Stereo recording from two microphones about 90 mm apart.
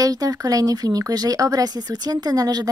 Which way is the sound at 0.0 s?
45° right (ahead or behind).